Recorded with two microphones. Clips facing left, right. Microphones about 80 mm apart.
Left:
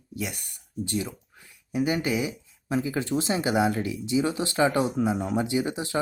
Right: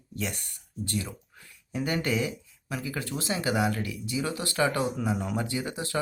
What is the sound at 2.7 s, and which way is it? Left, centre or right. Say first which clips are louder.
Speech: left 7 dB; left.